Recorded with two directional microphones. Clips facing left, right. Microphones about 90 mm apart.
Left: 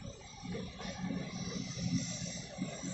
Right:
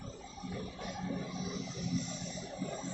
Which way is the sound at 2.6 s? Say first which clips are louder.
Right 3 dB; 45° right (ahead or behind).